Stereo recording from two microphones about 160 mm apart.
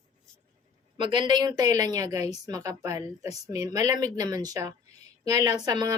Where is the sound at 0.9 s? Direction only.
30° right (ahead or behind).